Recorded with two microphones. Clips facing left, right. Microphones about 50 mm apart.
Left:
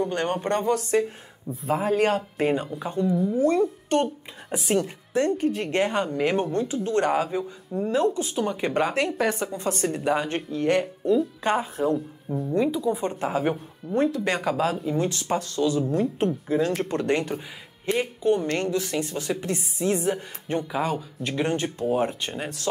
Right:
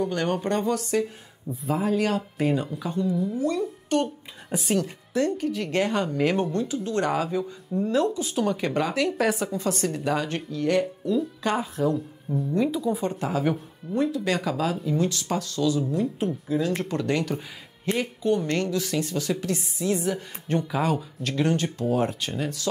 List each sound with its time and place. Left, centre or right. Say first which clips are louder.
0.1 s a woman's voice: even; left
3.3 s speech: left 5 dB; left
4.6 s a woman's voice: left 1 dB; centre
5.1 s speech: left 2 dB; left
7.2 s a woman's voice: right 1 dB; left
9.2 s speech: right 2 dB; centre
9.5 s a woman's voice: even; left
12.6 s speech: left 1 dB; centre
13.2 s a woman's voice: left 1 dB; left
13.9 s a woman's voice: left 1 dB; left
20.7 s speech: right 1 dB; centre
21.2 s a woman's voice: even; left